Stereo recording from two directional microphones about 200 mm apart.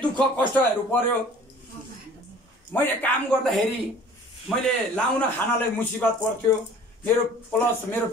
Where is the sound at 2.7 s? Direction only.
10° left (ahead or behind).